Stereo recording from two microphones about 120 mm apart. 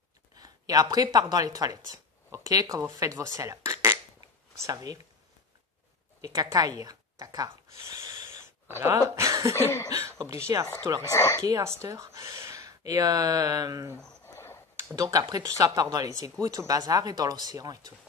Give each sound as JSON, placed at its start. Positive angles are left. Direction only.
{"t": 0.4, "sound": "speech", "side_deg": -30}
{"t": 6.2, "sound": "speech", "side_deg": -30}
{"t": 8.6, "sound": "speech", "side_deg": -20}
{"t": 11.1, "sound": "speech", "side_deg": 25}
{"t": 11.4, "sound": "speech", "side_deg": -25}
{"t": 14.2, "sound": "a sound", "side_deg": 20}
{"t": 15.0, "sound": "speech", "side_deg": -30}